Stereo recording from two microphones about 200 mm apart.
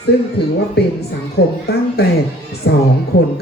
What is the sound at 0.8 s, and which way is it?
Speech, 55° left (ahead or behind).